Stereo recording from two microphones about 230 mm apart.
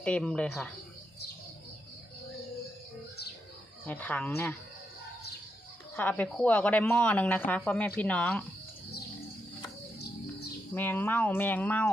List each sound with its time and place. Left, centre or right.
0.0 s speech: centre
3.8 s speech: centre
6.0 s speech: centre
10.8 s speech: centre